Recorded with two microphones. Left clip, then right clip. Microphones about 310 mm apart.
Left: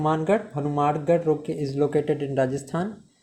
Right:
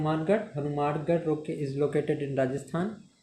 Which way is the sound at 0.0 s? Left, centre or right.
Left.